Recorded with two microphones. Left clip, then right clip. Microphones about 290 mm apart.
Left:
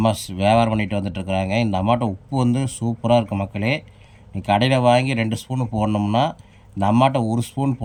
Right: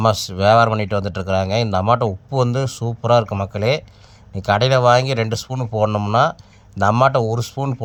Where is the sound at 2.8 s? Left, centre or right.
Right.